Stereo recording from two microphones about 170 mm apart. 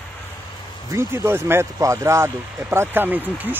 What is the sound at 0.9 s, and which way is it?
Speech, 15° right (ahead or behind).